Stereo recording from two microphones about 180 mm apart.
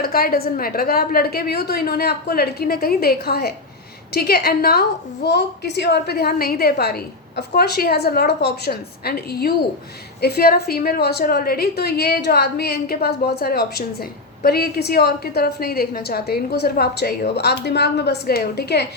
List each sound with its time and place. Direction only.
0.0 s a woman's voice: 55° left (ahead or behind)